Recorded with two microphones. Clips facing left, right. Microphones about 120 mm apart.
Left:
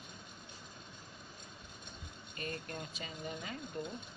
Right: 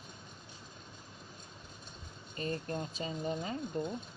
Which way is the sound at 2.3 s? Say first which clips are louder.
Right 6 dB; 30° right (ahead or behind).